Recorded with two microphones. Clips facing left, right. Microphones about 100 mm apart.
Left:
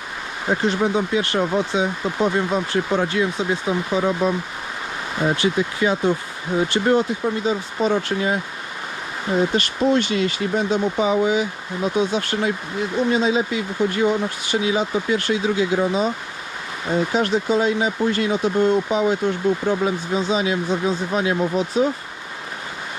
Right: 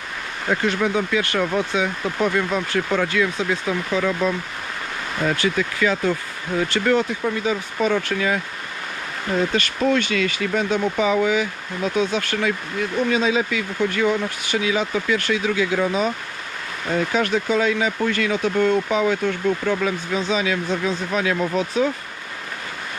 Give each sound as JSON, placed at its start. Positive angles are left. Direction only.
{"t": 0.6, "sound": "speech", "side_deg": 20}
{"t": 5.2, "sound": "speech", "side_deg": 25}